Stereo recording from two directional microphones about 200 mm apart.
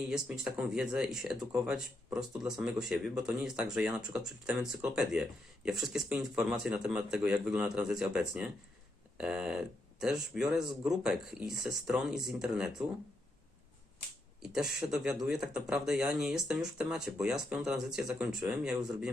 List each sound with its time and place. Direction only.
0.1 s speech: centre (ahead or behind)
14.4 s speech: 5° right (ahead or behind)